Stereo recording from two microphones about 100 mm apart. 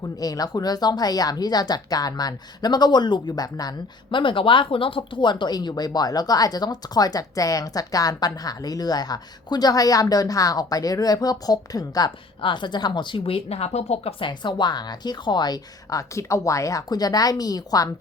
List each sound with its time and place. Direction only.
0.2 s speech: 40° left (ahead or behind)
4.2 s speech: 55° left (ahead or behind); by 12.1 s 40° left (ahead or behind)
12.4 s speech: 55° left (ahead or behind); by 14.3 s 85° left
14.3 s speech: 50° left (ahead or behind)